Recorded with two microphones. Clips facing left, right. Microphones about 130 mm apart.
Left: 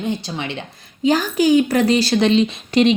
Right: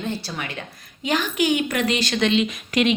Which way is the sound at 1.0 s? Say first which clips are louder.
Left 6 dB; 35° left (ahead or behind).